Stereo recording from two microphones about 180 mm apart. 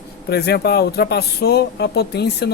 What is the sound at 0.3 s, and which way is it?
Speech, 60° left (ahead or behind).